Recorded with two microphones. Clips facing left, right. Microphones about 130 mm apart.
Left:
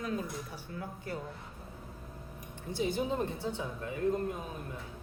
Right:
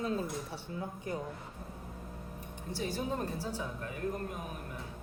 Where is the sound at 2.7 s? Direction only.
20° left (ahead or behind).